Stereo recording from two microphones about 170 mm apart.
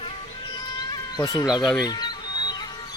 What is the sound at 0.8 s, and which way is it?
Insect, 25° left (ahead or behind).